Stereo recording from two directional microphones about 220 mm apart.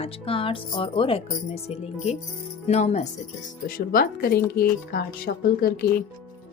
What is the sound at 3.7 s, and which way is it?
Speech, 40° left (ahead or behind).